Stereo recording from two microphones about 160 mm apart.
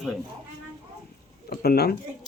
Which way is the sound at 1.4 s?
80° left.